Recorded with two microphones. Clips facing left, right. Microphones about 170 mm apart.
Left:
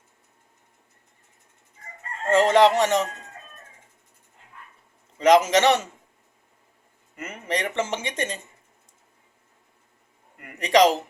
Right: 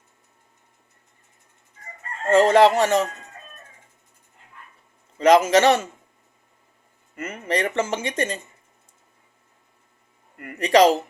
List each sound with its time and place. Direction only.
2.5 s speech: 20° left (ahead or behind)
5.2 s speech: 20° left (ahead or behind)
7.2 s speech: 20° left (ahead or behind)
10.4 s speech: 20° left (ahead or behind)